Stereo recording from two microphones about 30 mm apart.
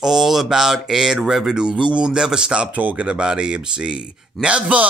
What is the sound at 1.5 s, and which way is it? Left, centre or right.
Speech, right.